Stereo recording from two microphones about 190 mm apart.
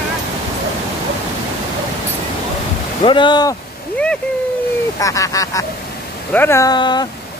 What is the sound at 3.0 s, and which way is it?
Speech, 25° left (ahead or behind).